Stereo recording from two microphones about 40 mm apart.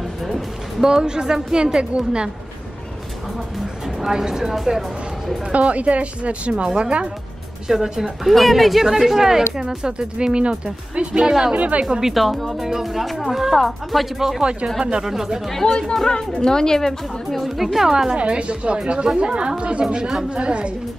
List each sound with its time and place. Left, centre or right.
0.7 s speech: centre
4.0 s speech: centre
5.5 s speech: right
7.6 s speech: centre
11.1 s speech: centre
11.5 s speech: right
11.8 s speech: centre
12.1 s speech: centre
14.8 s speech: centre
15.0 s speech: centre
15.5 s a woman's voice: centre
17.6 s speech: centre
18.1 s speech: right